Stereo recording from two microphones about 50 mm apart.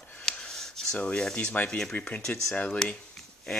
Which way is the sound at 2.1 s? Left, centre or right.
Centre.